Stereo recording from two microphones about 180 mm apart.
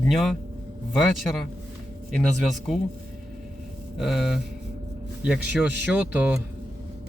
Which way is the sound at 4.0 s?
Centre (ahead or behind).